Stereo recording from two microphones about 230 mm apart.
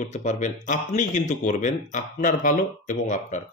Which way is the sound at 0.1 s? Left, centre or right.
Left.